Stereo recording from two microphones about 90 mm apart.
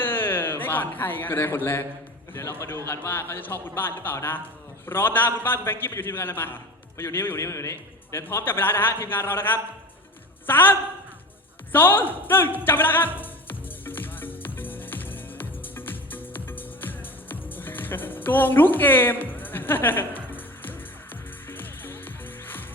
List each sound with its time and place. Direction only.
0.0 s a sound: 25° left (ahead or behind)
2.3 s a man's voice: 30° left (ahead or behind)
11.7 s music: 25° left (ahead or behind)